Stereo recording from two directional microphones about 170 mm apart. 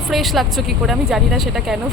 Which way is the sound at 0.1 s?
Centre (ahead or behind).